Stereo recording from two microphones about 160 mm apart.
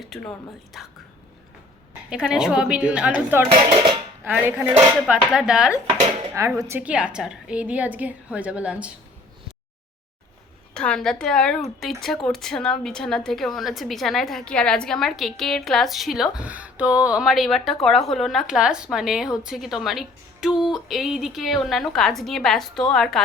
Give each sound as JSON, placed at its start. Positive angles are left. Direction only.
{"t": 0.0, "sound": "a woman's voice", "side_deg": 5}
{"t": 2.0, "sound": "a woman's voice", "side_deg": -5}
{"t": 3.5, "sound": "speech", "side_deg": -30}
{"t": 4.2, "sound": "a woman's voice", "side_deg": -10}
{"t": 6.3, "sound": "a woman's voice", "side_deg": -20}
{"t": 10.8, "sound": "a woman's voice", "side_deg": 5}